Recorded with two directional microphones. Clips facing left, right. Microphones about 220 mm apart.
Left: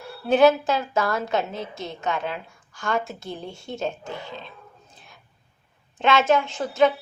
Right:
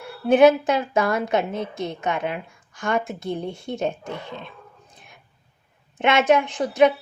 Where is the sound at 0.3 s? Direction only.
20° right (ahead or behind).